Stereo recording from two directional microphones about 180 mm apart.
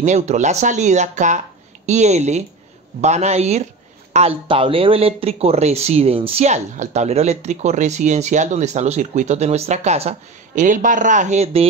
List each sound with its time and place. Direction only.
0.0 s speech: 40° right (ahead or behind)